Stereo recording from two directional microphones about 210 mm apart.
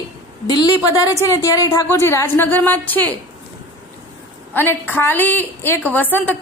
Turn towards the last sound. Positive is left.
turn(degrees=10)  # may be behind; listen again after turning